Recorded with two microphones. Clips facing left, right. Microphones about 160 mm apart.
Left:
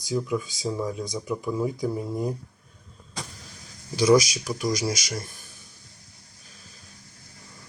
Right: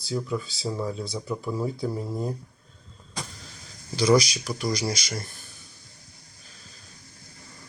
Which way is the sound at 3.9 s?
10° left (ahead or behind).